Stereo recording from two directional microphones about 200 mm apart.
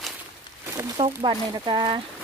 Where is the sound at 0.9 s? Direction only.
25° right (ahead or behind).